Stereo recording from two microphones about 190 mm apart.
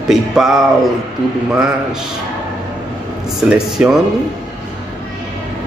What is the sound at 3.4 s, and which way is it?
Speech, 5° right (ahead or behind).